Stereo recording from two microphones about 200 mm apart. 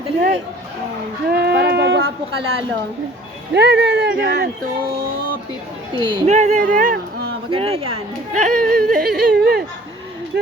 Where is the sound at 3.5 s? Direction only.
60° right (ahead or behind).